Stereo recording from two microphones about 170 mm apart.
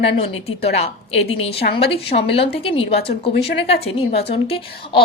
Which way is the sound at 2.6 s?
35° left (ahead or behind).